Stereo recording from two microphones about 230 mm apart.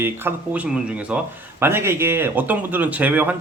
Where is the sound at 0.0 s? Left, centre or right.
Centre.